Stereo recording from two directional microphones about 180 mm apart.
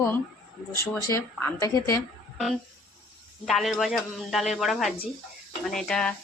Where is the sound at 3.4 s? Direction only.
Centre (ahead or behind).